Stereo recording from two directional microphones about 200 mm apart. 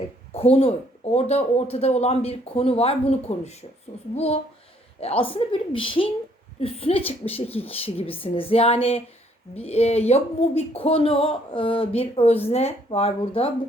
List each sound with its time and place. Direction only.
0.3 s speech: 30° left (ahead or behind)